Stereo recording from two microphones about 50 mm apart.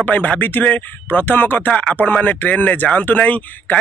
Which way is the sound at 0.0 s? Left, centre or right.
Left.